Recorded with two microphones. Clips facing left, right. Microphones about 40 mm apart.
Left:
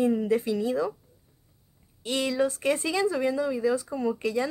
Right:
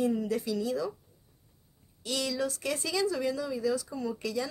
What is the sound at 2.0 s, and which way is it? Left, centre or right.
A woman's voice, left.